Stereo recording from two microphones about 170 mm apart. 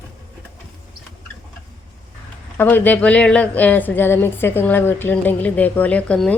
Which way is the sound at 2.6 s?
10° left (ahead or behind).